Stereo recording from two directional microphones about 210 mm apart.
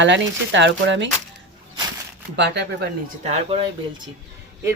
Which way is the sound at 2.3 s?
55° right (ahead or behind).